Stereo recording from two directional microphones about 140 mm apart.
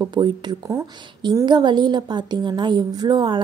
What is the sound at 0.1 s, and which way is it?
A woman's voice, 30° right (ahead or behind).